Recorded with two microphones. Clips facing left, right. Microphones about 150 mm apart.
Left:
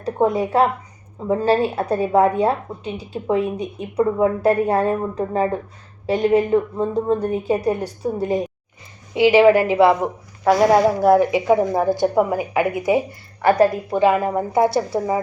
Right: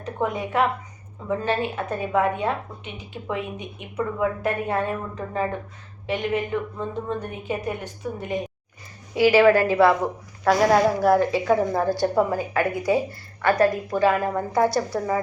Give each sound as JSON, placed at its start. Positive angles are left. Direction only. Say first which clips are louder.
{"t": 0.0, "sound": "a woman's voice", "louder": "left 8 dB", "side_deg": 35}
{"t": 9.1, "sound": "a woman's voice", "louder": "left 3 dB", "side_deg": 20}